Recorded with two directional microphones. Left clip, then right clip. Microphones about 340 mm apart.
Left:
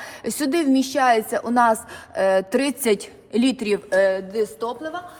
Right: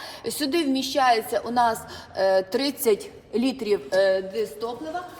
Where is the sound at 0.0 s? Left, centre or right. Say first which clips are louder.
Left 3 dB; left.